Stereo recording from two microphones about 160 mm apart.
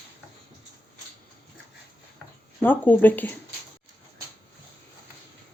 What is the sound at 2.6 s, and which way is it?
Speech, 10° left (ahead or behind).